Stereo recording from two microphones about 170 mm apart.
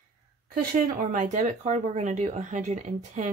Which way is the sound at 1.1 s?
50° right (ahead or behind).